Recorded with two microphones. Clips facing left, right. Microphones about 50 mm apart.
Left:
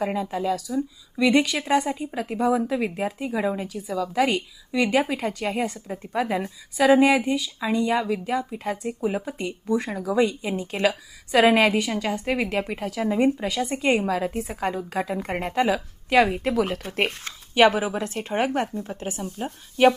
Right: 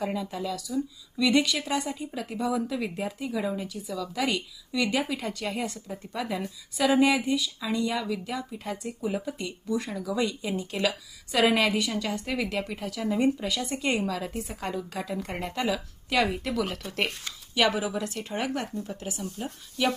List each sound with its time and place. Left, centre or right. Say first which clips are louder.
0.0 s a woman's voice: left 5 dB; left